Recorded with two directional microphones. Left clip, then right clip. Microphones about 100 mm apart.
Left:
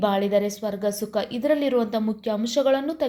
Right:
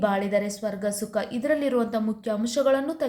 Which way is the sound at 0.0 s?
30° left (ahead or behind).